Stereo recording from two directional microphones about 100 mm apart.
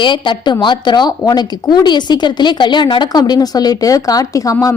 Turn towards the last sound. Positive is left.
turn(degrees=35)  # may be behind; listen again after turning